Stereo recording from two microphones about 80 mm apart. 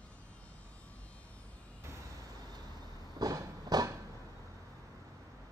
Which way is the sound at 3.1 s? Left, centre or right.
Right.